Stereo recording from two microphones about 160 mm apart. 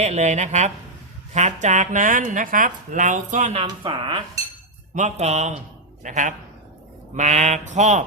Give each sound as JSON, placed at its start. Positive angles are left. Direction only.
{"t": 0.0, "sound": "speech", "side_deg": -45}
{"t": 3.6, "sound": "speech", "side_deg": -30}
{"t": 4.9, "sound": "speech", "side_deg": -50}